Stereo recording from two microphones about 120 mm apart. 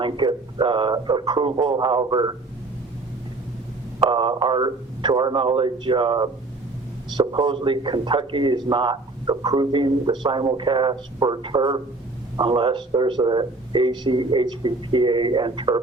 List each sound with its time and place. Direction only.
0.0 s speech: 40° right (ahead or behind)
4.1 s speech: 40° right (ahead or behind)